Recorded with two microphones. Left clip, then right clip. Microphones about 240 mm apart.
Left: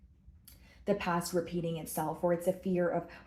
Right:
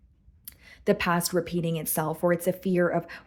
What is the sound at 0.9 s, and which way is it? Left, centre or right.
Speech, right.